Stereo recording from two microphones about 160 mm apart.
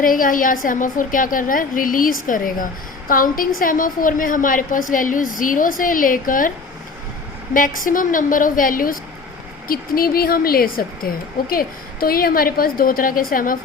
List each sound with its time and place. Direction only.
0.0 s a woman's voice: 60° left (ahead or behind)
7.5 s a woman's voice: 60° left (ahead or behind)